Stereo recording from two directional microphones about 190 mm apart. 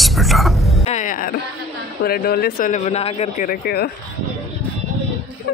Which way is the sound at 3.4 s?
50° left (ahead or behind).